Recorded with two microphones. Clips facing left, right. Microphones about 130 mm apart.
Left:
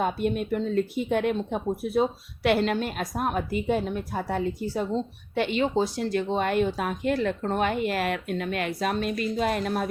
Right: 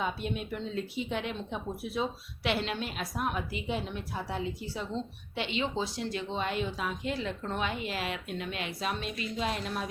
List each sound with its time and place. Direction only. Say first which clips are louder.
0.0 s speech: left 8 dB; 50° left (ahead or behind)